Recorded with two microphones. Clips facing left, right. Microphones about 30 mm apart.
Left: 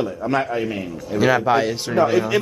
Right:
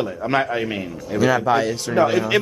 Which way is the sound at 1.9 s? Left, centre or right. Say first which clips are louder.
Even; centre.